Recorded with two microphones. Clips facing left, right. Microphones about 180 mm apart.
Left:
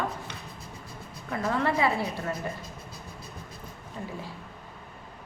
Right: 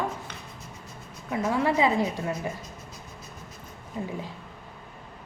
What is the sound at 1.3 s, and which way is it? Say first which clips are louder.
A woman's voice: right 2 dB; 10° right (ahead or behind).